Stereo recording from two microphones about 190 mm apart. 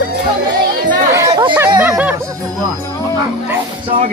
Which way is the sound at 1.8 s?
5° right (ahead or behind).